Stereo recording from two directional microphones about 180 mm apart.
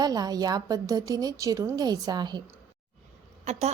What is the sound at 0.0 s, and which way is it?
A woman's voice, 20° right (ahead or behind).